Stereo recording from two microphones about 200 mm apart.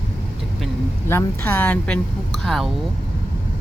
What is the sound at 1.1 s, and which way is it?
A woman's voice, 10° left (ahead or behind).